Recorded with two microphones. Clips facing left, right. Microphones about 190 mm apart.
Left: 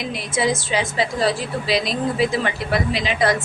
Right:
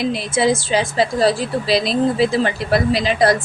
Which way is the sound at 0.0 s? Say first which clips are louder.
Right 5 dB; 30° right (ahead or behind).